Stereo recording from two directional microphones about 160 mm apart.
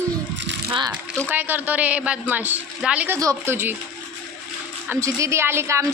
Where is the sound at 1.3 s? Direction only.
10° right (ahead or behind).